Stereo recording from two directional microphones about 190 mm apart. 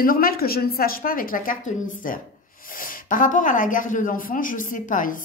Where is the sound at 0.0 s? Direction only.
50° left (ahead or behind).